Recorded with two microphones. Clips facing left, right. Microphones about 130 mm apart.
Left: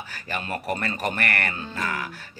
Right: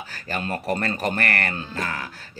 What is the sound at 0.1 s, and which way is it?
Speech, 35° right (ahead or behind).